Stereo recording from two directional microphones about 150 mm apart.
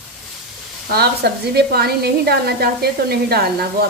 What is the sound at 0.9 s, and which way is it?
A woman's voice, 90° right.